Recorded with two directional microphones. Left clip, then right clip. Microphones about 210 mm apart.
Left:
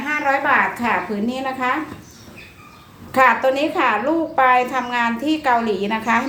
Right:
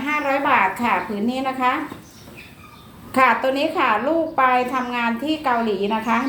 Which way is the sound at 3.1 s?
15° left (ahead or behind).